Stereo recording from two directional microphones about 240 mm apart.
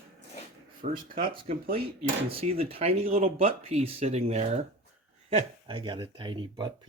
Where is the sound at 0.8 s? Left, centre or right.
Right.